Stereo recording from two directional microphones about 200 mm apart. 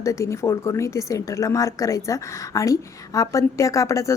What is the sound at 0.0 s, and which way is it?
A woman's voice, 15° left (ahead or behind).